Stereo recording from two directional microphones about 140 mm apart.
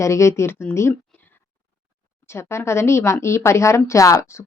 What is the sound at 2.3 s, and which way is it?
A woman's voice, 20° left (ahead or behind).